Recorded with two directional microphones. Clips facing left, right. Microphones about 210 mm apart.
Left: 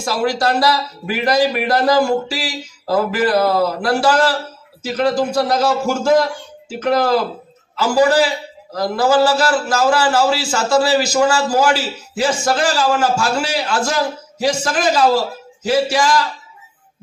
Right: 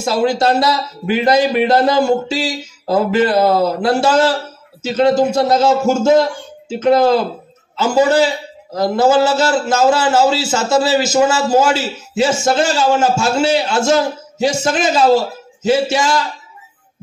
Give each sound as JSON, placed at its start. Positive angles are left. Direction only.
{"t": 0.0, "sound": "a man's voice", "side_deg": -25}